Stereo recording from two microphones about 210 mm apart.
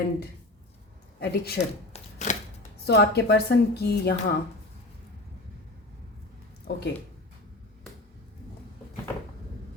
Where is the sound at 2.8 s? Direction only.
50° left (ahead or behind).